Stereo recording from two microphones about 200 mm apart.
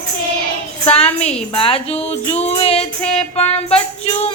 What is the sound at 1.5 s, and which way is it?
Music, 30° left (ahead or behind).